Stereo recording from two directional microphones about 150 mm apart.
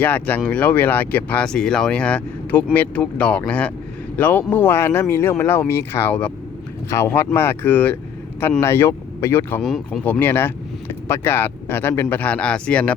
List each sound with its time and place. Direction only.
0.0 s speech: 10° left (ahead or behind)
9.6 s speech: centre (ahead or behind)
10.0 s speech: 10° left (ahead or behind)